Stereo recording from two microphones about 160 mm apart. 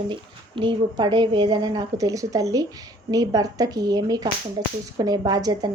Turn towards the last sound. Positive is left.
turn(degrees=-25)  # may be behind; listen again after turning